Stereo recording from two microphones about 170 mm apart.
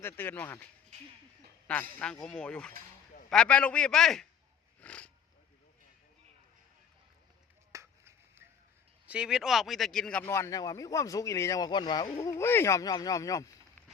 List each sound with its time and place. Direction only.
0.0 s speech: 10° left (ahead or behind)
4.8 s a sound: 5° left (ahead or behind)
7.7 s finger snapping: 15° right (ahead or behind)
9.0 s speech: 5° right (ahead or behind)
10.2 s speech: 15° left (ahead or behind)